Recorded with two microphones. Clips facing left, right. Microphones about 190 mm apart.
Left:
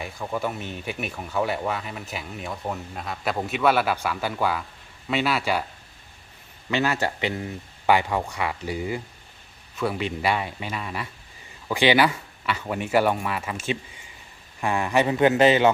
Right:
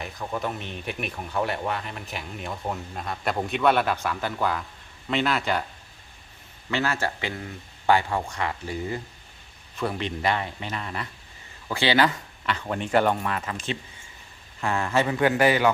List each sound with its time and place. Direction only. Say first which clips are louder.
0.0 s speech: left 2 dB; 5° left (ahead or behind)
6.7 s speech: left 2 dB; 15° left (ahead or behind)